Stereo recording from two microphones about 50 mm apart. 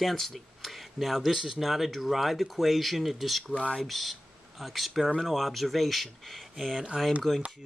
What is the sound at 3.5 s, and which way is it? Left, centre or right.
Speech, left.